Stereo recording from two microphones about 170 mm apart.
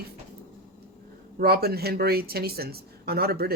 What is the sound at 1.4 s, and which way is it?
Speech, 65° right (ahead or behind).